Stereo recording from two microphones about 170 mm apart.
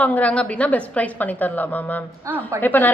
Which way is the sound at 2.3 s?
20° right (ahead or behind).